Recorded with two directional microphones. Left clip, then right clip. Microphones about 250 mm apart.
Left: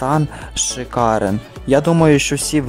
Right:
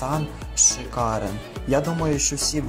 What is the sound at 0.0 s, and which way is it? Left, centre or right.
A man's voice, left.